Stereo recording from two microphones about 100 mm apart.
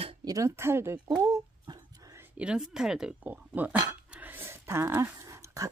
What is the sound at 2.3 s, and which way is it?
Speech, 10° right (ahead or behind).